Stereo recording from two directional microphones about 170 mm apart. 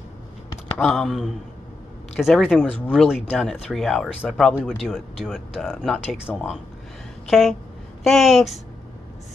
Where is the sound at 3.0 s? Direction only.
5° right (ahead or behind).